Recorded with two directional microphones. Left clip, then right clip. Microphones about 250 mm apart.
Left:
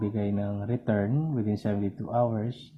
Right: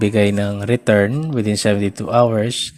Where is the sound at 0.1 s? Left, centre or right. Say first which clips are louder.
Right 15 dB; right.